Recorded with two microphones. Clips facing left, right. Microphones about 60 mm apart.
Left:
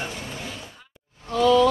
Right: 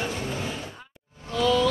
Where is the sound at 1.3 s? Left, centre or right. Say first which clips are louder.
Left 5 dB; left.